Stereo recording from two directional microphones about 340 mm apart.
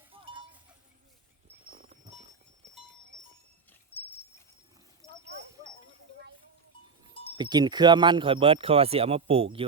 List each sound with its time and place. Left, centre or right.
0.1 s cowbell: centre
1.7 s livestock: right
7.3 s speech: centre